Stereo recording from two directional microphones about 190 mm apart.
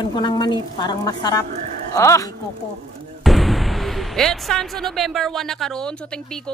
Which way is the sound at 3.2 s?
Centre (ahead or behind).